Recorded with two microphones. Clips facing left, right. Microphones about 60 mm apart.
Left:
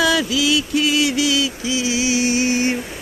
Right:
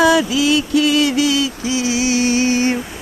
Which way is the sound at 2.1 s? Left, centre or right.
Centre.